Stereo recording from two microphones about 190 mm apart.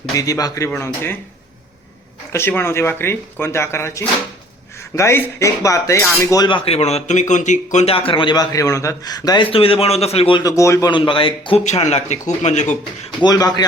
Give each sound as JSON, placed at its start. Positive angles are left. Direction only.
{"t": 0.2, "sound": "speech", "side_deg": 20}
{"t": 2.3, "sound": "speech", "side_deg": 10}
{"t": 4.9, "sound": "cutlery", "side_deg": 15}
{"t": 11.6, "sound": "speech", "side_deg": 35}
{"t": 13.2, "sound": "cutlery", "side_deg": 20}